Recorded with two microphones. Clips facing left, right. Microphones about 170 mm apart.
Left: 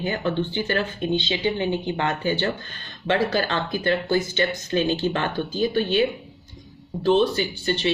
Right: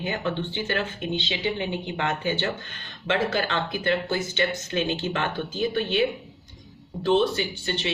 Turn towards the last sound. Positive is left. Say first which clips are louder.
# left 5 dB
turn(degrees=35)  # may be behind; listen again after turning